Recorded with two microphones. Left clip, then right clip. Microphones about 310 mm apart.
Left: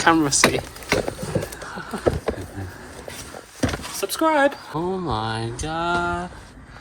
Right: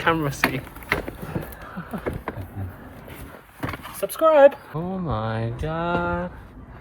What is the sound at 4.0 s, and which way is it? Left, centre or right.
Speech, centre.